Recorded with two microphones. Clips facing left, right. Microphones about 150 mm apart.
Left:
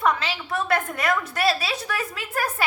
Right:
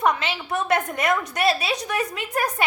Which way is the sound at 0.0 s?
20° right (ahead or behind).